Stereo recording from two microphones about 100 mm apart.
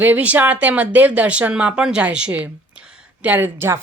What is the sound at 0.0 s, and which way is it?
Speech, 15° right (ahead or behind).